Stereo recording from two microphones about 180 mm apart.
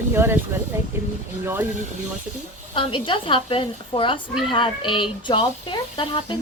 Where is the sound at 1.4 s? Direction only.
10° right (ahead or behind).